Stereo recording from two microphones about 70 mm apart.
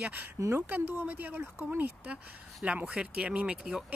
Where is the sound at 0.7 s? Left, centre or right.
Right.